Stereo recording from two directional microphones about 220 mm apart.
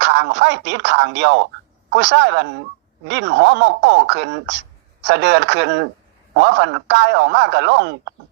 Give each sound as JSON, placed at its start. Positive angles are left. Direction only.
{"t": 0.0, "sound": "a man's voice", "side_deg": -55}